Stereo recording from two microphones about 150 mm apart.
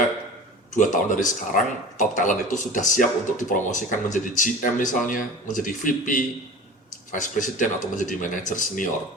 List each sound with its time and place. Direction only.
0.8 s speech: 60° left (ahead or behind)